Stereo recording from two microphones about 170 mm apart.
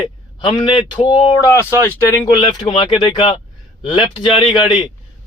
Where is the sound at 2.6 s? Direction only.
25° left (ahead or behind).